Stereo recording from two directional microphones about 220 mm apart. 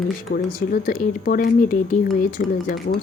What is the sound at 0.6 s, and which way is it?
Speech, 40° left (ahead or behind).